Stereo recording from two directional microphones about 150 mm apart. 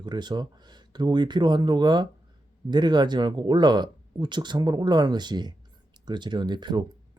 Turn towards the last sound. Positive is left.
turn(degrees=-30)  # may be behind; listen again after turning